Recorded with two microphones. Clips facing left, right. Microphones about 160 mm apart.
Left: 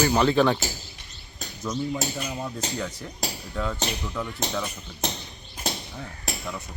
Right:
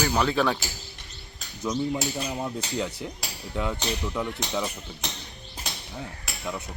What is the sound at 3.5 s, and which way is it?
Speech, 15° right (ahead or behind).